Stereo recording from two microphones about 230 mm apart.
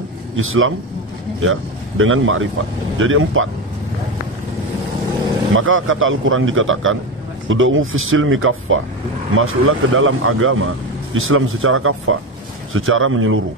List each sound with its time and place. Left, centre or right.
0.4 s speech: right
5.6 s speech: right